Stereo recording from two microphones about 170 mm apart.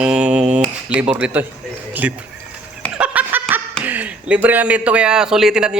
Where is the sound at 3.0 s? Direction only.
10° right (ahead or behind).